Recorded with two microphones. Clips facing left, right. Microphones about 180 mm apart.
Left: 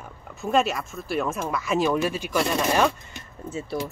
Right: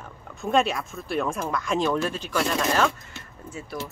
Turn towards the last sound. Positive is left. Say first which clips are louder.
# left 5 dB
turn(degrees=25)  # may be behind; listen again after turning